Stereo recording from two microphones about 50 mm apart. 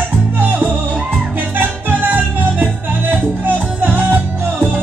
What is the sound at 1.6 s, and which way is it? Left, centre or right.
Music, right.